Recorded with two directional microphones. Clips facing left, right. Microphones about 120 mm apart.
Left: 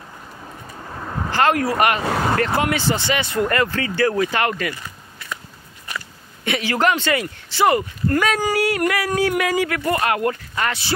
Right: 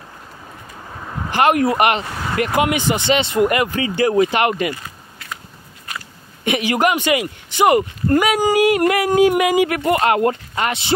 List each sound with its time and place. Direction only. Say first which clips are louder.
0.9 s a sound: left 1 dB; 5° left (ahead or behind)
1.3 s speech: right 3 dB; 20° right (ahead or behind)
6.4 s speech: right 2 dB; 15° right (ahead or behind)